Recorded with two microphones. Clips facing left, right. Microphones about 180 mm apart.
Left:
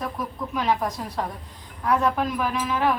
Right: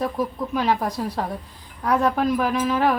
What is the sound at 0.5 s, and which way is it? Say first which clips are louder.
Speech: right 1 dB; 35° right (ahead or behind).